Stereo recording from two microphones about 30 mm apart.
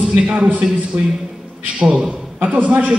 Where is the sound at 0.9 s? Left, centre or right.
Right.